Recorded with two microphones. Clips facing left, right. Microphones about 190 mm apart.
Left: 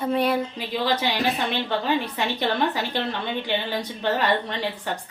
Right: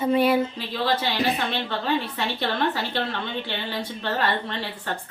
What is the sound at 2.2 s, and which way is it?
A woman's voice, 15° left (ahead or behind).